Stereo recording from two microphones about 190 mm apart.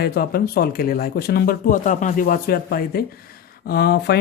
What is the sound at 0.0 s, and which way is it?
Speech, 55° left (ahead or behind).